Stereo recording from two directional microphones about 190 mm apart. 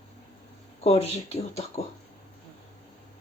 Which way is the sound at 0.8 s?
30° left (ahead or behind).